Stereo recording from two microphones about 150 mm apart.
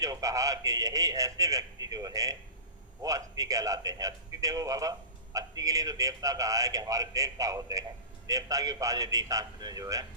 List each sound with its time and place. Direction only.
0.0 s a man's voice: 20° right (ahead or behind)